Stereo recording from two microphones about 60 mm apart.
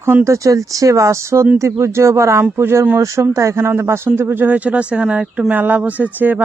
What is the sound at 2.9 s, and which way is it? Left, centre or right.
Speech, right.